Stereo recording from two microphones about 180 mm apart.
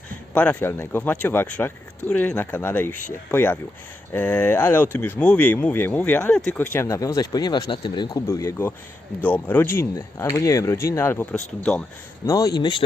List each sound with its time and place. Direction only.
0.3 s speech: 10° left (ahead or behind)
12.2 s speech: 20° left (ahead or behind)